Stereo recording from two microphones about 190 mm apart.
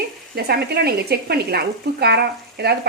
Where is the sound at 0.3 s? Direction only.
55° right (ahead or behind).